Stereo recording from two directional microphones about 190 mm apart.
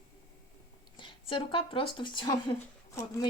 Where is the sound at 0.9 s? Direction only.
25° left (ahead or behind).